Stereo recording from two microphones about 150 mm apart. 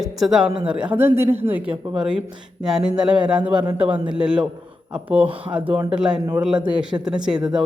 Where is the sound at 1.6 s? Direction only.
35° right (ahead or behind).